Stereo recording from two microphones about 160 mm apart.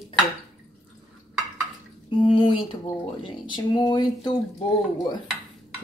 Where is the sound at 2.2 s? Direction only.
30° left (ahead or behind).